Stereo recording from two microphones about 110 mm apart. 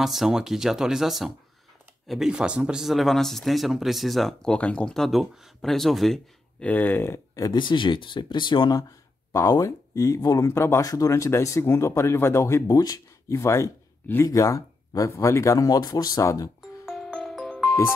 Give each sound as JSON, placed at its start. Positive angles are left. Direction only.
{"t": 0.0, "sound": "speech", "side_deg": 0}
{"t": 6.6, "sound": "speech", "side_deg": 15}
{"t": 7.5, "sound": "speech", "side_deg": 45}
{"t": 9.5, "sound": "speech", "side_deg": 30}
{"t": 16.8, "sound": "music", "side_deg": 0}